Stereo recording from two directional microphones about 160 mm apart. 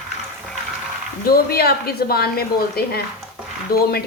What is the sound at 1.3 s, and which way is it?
Speech, 75° left (ahead or behind).